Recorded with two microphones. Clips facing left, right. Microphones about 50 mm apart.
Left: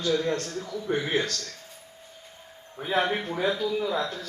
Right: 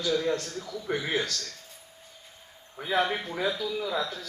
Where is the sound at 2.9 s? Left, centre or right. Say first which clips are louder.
Left 1 dB; left.